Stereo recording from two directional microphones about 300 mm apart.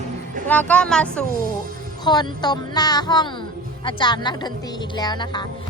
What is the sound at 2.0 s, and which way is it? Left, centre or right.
A woman's voice, centre.